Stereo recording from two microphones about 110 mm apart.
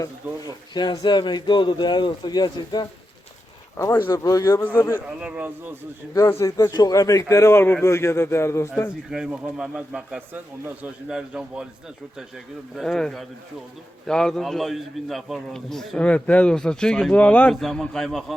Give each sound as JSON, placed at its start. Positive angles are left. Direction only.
{"t": 0.2, "sound": "speech", "side_deg": -20}
{"t": 0.7, "sound": "speech", "side_deg": 40}
{"t": 3.8, "sound": "a man's voice", "side_deg": 25}
{"t": 4.6, "sound": "a man's voice", "side_deg": 15}
{"t": 5.2, "sound": "speech", "side_deg": -15}
{"t": 6.1, "sound": "a man's voice", "side_deg": 25}
{"t": 9.0, "sound": "speech", "side_deg": -5}
{"t": 11.1, "sound": "a man's voice", "side_deg": -5}
{"t": 12.7, "sound": "a man's voice", "side_deg": 5}